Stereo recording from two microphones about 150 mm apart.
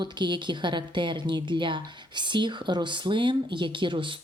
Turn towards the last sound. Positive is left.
turn(degrees=-35)  # may be behind; listen again after turning